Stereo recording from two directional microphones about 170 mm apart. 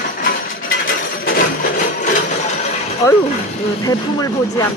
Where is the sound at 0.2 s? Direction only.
55° left (ahead or behind).